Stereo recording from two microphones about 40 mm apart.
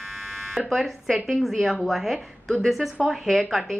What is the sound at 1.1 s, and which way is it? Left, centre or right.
A woman's voice, centre.